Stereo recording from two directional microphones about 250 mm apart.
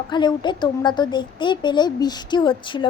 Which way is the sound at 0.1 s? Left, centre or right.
Centre.